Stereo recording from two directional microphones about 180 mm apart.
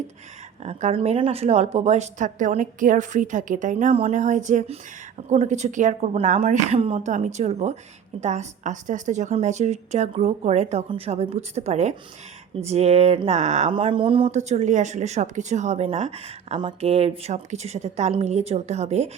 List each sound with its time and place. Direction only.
0.6 s speech: 40° right (ahead or behind)
13.7 s speech: 30° right (ahead or behind)